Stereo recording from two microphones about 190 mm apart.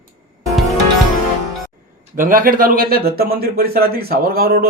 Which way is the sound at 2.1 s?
45° right (ahead or behind).